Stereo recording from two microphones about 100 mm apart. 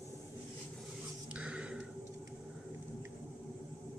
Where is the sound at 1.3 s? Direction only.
10° right (ahead or behind).